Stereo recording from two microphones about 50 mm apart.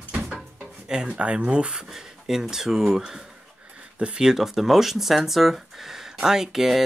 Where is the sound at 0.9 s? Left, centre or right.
Centre.